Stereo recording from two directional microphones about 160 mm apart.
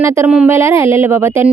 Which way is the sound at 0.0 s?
15° right (ahead or behind).